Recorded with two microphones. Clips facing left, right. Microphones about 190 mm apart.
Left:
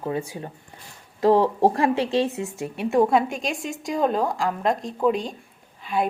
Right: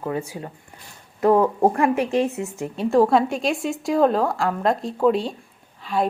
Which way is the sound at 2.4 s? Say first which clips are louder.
Right 2 dB; 20° right (ahead or behind).